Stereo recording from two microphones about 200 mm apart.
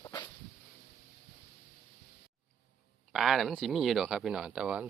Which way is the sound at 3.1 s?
Centre (ahead or behind).